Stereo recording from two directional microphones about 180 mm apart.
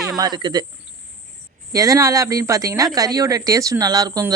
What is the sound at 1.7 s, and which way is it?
Speech, 20° right (ahead or behind).